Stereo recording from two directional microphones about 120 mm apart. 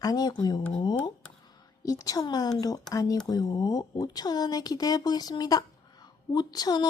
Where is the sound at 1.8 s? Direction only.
30° left (ahead or behind).